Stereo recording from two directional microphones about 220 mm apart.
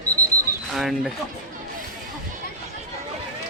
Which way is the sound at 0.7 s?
Centre (ahead or behind).